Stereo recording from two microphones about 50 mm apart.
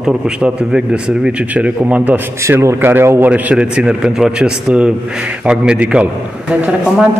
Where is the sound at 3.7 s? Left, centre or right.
Centre.